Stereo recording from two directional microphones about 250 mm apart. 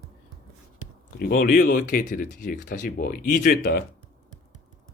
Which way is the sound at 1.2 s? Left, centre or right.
Left.